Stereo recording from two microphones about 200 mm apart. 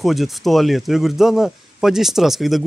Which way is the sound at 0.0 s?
Centre (ahead or behind).